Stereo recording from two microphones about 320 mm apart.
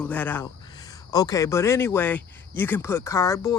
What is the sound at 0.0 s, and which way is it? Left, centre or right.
Speech, centre.